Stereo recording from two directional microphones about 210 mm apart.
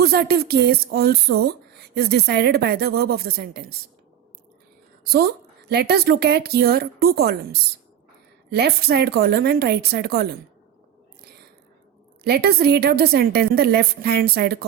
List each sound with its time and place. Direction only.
0.0 s speech: 50° right (ahead or behind)
5.0 s speech: 45° right (ahead or behind)
12.2 s speech: 50° right (ahead or behind)